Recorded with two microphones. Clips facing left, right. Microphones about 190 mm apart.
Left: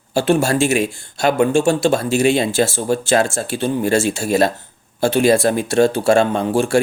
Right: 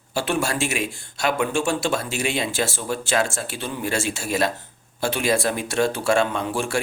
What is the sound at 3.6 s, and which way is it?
Speech, 45° left (ahead or behind).